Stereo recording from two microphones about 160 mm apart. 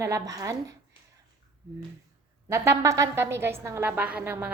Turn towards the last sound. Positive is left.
turn(degrees=-10)  # may be behind; listen again after turning